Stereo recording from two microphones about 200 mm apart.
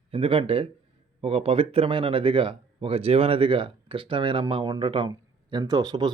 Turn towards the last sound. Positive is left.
turn(degrees=-20)  # may be behind; listen again after turning